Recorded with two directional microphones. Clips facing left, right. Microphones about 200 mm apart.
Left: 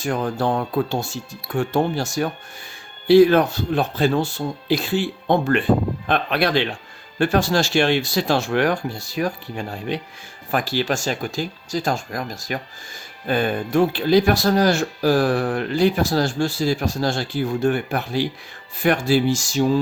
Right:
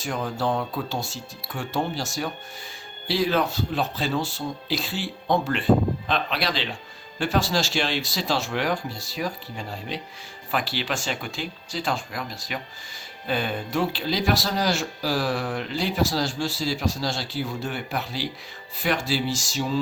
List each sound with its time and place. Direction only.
0.0 s speech: 55° left (ahead or behind)